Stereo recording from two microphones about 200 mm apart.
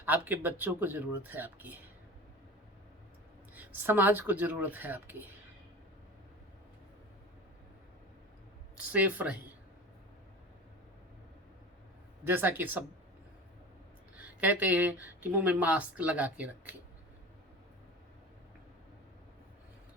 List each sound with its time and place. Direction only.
0.0 s speech: 10° right (ahead or behind)
3.5 s speech: 10° right (ahead or behind)
8.9 s speech: 5° right (ahead or behind)
12.2 s speech: 10° right (ahead or behind)
14.2 s speech: 5° right (ahead or behind)